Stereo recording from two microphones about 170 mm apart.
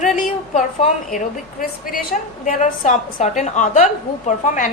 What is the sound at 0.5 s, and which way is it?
A woman's voice, 45° left (ahead or behind).